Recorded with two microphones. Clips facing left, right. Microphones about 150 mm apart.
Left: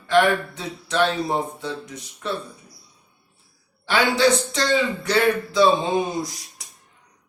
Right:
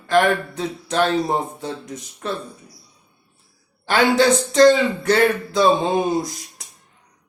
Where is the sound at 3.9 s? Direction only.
45° right (ahead or behind).